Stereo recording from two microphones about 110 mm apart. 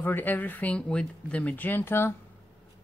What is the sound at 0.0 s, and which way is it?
Speech, 20° left (ahead or behind).